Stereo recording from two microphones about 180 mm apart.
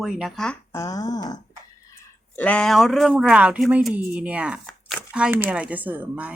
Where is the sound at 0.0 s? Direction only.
Centre (ahead or behind).